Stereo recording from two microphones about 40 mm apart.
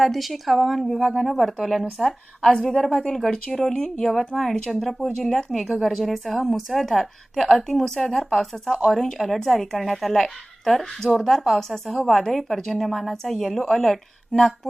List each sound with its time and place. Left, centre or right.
0.0 s a woman's voice: centre
2.4 s a woman's voice: centre
3.3 s a woman's voice: centre
4.3 s a woman's voice: centre